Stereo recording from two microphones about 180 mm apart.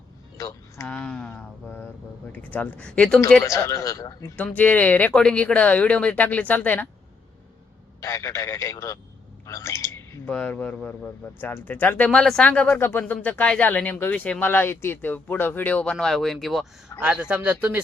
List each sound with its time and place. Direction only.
0.3 s a sound: 20° left (ahead or behind)
0.9 s a sound: 5° left (ahead or behind)
2.3 s speech: 10° left (ahead or behind)
3.4 s speech: 15° left (ahead or behind)
4.4 s speech: 10° left (ahead or behind)
8.0 s speech: 15° left (ahead or behind); by 17.7 s 10° right (ahead or behind)